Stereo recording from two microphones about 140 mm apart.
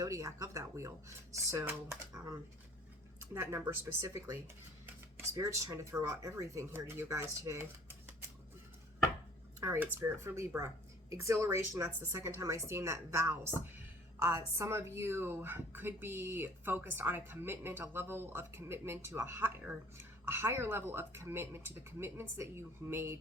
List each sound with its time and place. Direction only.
0.0 s speech: 25° right (ahead or behind)
3.3 s speech: 15° right (ahead or behind)
9.6 s a woman's voice: 15° right (ahead or behind)